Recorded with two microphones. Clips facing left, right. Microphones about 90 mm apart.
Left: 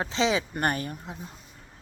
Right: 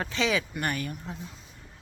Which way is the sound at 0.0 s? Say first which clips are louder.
Left 2 dB; 25° left (ahead or behind).